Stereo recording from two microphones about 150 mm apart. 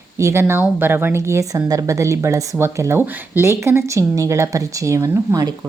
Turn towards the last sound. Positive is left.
turn(degrees=-20)  # may be behind; listen again after turning